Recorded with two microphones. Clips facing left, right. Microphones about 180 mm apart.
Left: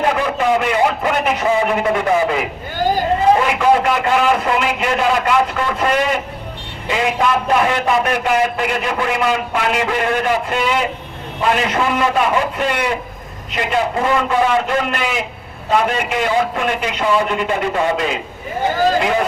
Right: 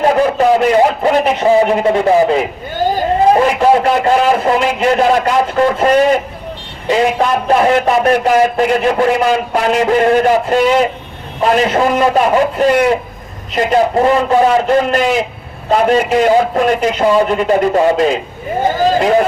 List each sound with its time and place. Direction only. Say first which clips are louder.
0.0 s a man's voice: right 6 dB; 40° right (ahead or behind)
3.4 s a man's voice: right 4 dB; 40° right (ahead or behind)